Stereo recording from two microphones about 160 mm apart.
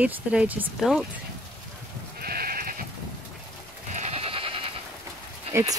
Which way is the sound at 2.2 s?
70° right (ahead or behind).